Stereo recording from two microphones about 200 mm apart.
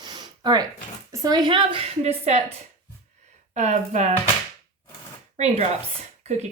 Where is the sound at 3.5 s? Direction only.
35° right (ahead or behind).